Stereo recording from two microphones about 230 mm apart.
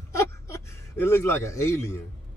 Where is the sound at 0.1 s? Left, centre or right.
Centre.